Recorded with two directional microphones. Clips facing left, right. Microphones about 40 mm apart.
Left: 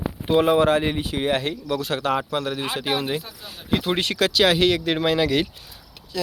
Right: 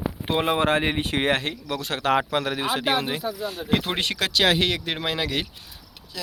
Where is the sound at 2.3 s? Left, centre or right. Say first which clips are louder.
Even; right.